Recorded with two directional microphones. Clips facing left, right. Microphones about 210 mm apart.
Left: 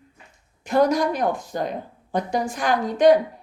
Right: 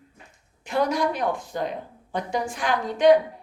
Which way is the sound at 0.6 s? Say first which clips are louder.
Left 4 dB; 40° left (ahead or behind).